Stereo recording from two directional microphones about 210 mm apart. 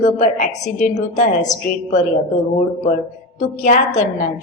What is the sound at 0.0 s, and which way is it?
A woman's voice, 35° left (ahead or behind).